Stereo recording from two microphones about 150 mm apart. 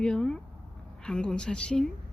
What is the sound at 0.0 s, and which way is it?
Speech, 5° left (ahead or behind).